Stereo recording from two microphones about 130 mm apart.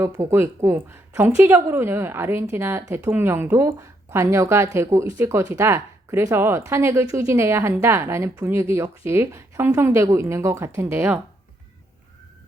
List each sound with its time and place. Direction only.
0.0 s a woman's voice: 20° right (ahead or behind)